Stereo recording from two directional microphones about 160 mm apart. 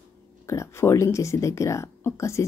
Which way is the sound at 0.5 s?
15° left (ahead or behind).